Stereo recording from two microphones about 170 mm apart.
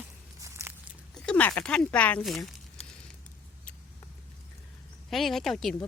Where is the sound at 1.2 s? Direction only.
5° left (ahead or behind).